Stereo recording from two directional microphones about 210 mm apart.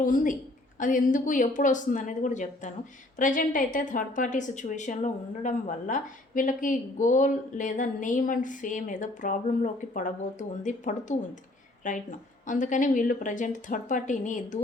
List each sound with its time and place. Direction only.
0.0 s a woman's voice: 40° left (ahead or behind)